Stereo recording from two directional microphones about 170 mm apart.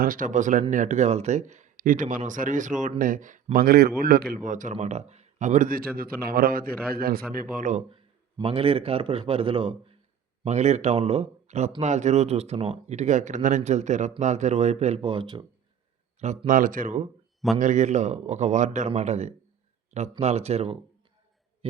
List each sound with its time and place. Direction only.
0.0 s speech: 55° right (ahead or behind)
4.4 s speech: 50° right (ahead or behind)
7.9 s a man's voice: 30° right (ahead or behind)
16.2 s speech: 45° right (ahead or behind)
21.6 s a sound: 35° right (ahead or behind)